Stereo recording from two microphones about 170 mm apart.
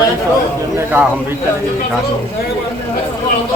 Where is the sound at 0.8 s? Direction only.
10° right (ahead or behind).